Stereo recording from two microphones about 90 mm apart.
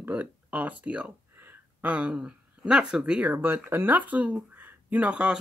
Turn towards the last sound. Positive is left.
turn(degrees=-10)  # may be behind; listen again after turning